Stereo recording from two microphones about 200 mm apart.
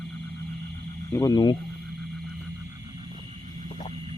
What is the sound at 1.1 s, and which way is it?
Speech, 20° left (ahead or behind).